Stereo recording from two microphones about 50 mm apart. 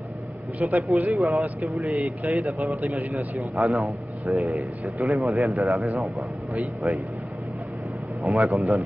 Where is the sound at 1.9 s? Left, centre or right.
Right.